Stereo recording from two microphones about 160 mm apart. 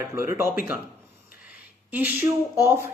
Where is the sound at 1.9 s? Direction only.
15° right (ahead or behind).